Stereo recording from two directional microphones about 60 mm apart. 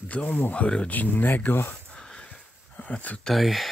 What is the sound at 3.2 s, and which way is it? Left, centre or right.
Speech, centre.